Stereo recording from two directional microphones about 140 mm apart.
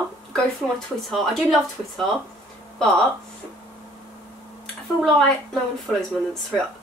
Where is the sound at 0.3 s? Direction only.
Centre (ahead or behind).